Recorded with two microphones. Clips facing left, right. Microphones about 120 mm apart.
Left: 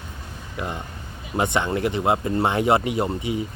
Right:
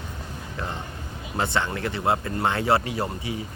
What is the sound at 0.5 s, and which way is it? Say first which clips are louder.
A man's voice: left 3 dB; 15° left (ahead or behind).